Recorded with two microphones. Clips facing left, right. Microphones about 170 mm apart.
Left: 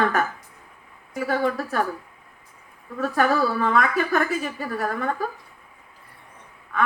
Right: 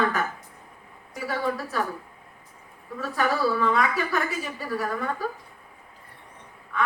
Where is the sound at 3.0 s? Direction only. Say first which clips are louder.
Left 4 dB; 50° left (ahead or behind).